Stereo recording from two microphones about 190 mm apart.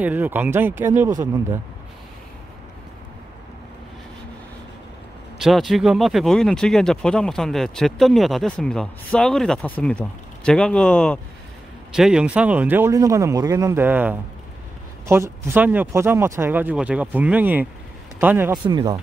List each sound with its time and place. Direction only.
0.0 s speech: 10° right (ahead or behind)
5.4 s speech: centre (ahead or behind)
18.5 s speech: 20° right (ahead or behind)